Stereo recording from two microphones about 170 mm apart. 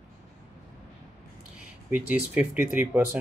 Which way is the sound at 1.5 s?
10° right (ahead or behind).